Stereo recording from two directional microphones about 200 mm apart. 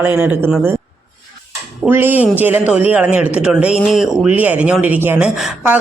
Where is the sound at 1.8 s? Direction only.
10° right (ahead or behind).